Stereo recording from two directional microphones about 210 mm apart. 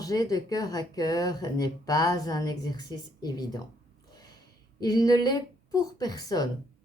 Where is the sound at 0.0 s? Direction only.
15° left (ahead or behind).